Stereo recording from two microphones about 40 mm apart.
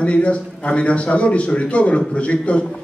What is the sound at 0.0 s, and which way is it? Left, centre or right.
A man's voice, left.